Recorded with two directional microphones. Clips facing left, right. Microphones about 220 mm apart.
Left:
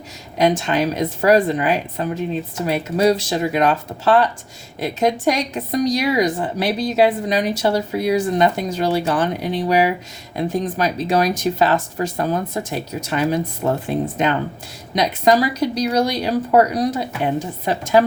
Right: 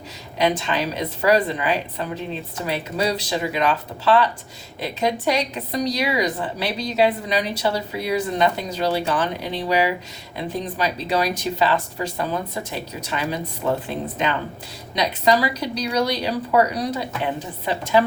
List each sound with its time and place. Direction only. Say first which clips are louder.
0.3 s a woman's voice: left 4 dB; 45° left (ahead or behind)
14.9 s a woman's voice: left 4 dB; 50° left (ahead or behind)